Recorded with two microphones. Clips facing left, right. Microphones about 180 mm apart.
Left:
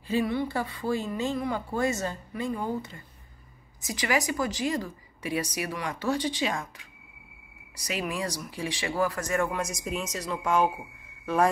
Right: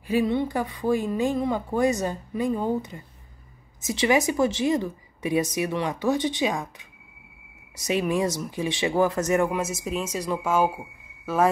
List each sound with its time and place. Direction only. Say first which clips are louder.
0.1 s a woman's voice: right 4 dB; 20° right (ahead or behind)
9.6 s speech: right 4 dB; 5° right (ahead or behind)